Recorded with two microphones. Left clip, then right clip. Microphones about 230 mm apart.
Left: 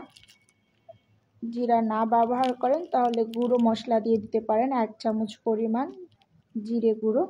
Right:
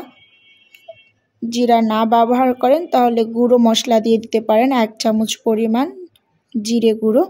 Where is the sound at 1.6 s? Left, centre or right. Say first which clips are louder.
Right 10 dB; right.